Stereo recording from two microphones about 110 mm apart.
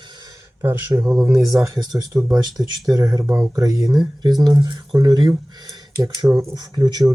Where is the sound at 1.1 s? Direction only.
5° right (ahead or behind).